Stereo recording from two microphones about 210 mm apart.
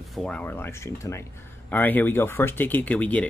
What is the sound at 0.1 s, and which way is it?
Speech, 5° left (ahead or behind).